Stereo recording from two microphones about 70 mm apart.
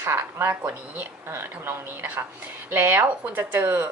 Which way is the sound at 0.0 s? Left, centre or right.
Right.